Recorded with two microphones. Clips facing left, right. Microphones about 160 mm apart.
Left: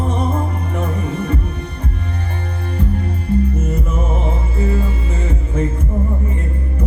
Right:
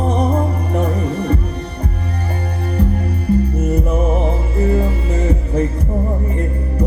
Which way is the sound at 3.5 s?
35° right (ahead or behind).